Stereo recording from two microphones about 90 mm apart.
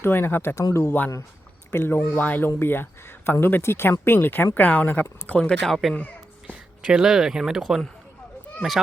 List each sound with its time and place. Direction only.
0.0 s speech: 25° left (ahead or behind); by 7.8 s 5° right (ahead or behind)